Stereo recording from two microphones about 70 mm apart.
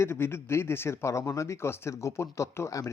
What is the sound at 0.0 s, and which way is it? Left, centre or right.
Speech, left.